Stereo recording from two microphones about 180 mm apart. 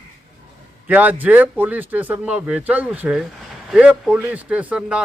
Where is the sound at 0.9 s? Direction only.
10° right (ahead or behind).